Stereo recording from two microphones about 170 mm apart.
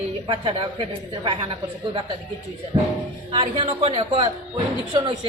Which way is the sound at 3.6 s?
35° right (ahead or behind).